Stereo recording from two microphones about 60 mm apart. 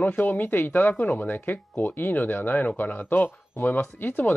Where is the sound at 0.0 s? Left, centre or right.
Left.